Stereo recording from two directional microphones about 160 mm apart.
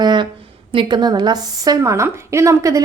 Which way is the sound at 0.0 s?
30° right (ahead or behind).